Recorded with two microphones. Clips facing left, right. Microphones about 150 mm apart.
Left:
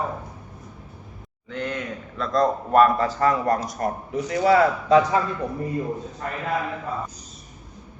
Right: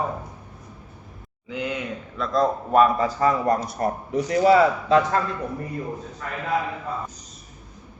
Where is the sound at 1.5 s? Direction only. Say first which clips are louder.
Right 1 dB; 5° right (ahead or behind).